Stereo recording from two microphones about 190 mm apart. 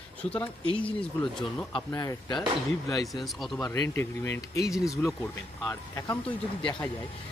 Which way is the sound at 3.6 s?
15° left (ahead or behind).